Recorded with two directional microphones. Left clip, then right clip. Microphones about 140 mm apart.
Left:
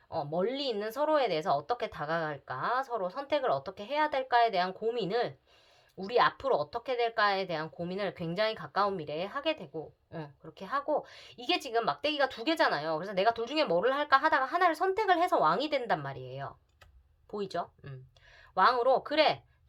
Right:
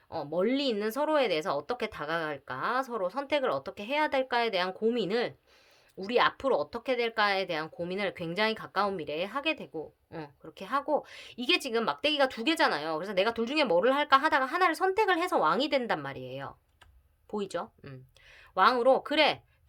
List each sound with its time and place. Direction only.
0.1 s a woman's voice: 45° right (ahead or behind)